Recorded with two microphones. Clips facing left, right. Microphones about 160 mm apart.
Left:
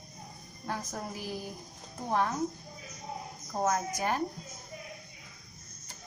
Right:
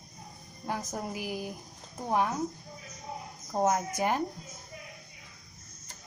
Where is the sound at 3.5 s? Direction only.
20° right (ahead or behind).